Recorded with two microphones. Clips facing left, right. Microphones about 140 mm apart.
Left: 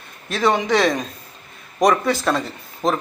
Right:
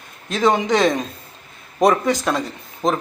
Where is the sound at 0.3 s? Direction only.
20° right (ahead or behind).